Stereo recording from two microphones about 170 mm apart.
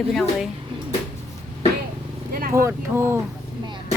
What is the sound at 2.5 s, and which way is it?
Speech, 15° right (ahead or behind).